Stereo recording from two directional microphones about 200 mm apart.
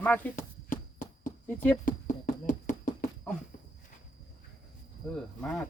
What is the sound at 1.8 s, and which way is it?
Knock, 45° left (ahead or behind).